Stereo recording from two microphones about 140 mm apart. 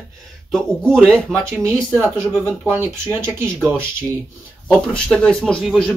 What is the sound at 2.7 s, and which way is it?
Speech, 15° right (ahead or behind).